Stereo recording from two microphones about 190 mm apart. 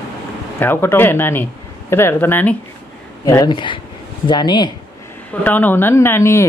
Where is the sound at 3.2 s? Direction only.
20° left (ahead or behind).